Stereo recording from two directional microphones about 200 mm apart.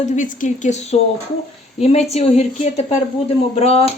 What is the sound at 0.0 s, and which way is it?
Speech, 35° left (ahead or behind).